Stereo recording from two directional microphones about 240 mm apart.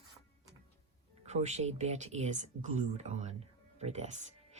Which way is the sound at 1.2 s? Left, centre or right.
Right.